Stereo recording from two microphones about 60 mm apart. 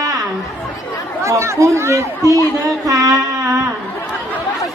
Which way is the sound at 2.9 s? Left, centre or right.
Right.